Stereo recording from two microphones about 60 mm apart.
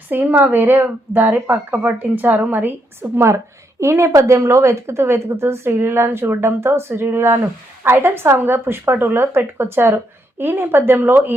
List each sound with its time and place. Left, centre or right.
0.1 s speech: right